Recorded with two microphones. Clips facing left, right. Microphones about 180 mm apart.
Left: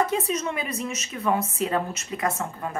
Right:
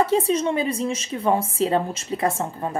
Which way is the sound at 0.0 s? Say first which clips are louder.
Right 5 dB; 30° right (ahead or behind).